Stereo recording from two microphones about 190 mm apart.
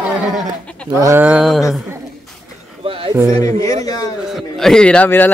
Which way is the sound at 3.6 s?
20° left (ahead or behind).